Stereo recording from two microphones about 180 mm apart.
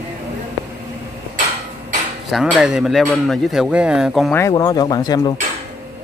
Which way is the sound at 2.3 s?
5° right (ahead or behind).